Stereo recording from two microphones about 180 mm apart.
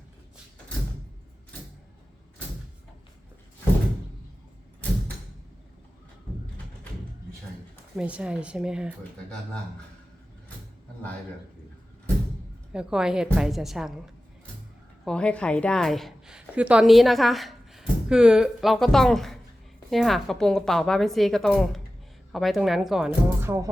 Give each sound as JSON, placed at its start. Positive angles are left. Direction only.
{"t": 7.9, "sound": "a woman's voice", "side_deg": -5}
{"t": 12.7, "sound": "a woman's voice", "side_deg": -5}
{"t": 15.0, "sound": "a woman's voice", "side_deg": 5}
{"t": 23.4, "sound": "music", "side_deg": -15}